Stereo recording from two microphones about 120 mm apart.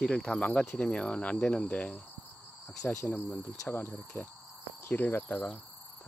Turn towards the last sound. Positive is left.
turn(degrees=15)  # may be behind; listen again after turning